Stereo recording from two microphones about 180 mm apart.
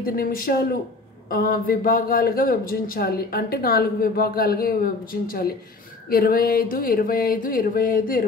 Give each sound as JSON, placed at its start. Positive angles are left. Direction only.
{"t": 0.0, "sound": "speech", "side_deg": 55}